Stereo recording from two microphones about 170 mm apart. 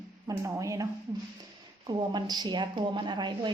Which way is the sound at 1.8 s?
25° right (ahead or behind).